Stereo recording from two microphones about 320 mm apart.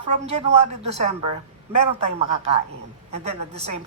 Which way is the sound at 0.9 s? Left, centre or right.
Centre.